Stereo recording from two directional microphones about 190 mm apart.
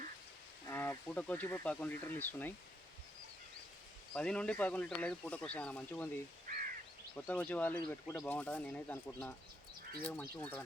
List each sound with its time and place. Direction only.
0.7 s speech: 10° left (ahead or behind)
4.1 s speech: 5° left (ahead or behind)
6.5 s caw: 45° right (ahead or behind)
7.2 s speech: 5° left (ahead or behind)